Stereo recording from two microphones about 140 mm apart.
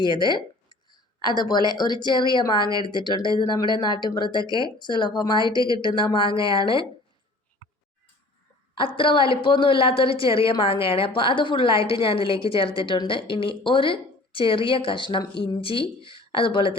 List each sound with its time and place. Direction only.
0.1 s a sound: 35° left (ahead or behind)
1.7 s a woman's voice: 30° left (ahead or behind)
8.8 s a woman's voice: 40° left (ahead or behind)